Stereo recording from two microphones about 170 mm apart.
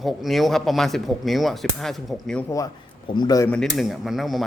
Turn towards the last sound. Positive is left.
turn(degrees=0)  # may be behind; listen again after turning